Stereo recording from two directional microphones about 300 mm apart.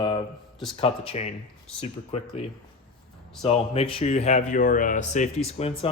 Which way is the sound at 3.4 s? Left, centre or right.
Centre.